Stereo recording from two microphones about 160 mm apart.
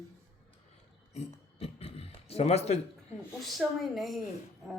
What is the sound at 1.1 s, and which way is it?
Speech, 40° left (ahead or behind).